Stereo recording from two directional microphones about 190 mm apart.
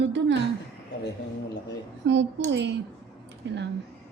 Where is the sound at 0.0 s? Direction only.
70° right (ahead or behind).